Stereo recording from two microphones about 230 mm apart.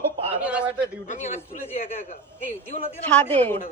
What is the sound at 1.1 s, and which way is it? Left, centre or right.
A man's voice, left.